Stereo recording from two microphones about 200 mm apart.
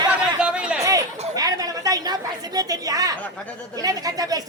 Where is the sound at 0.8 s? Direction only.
15° right (ahead or behind).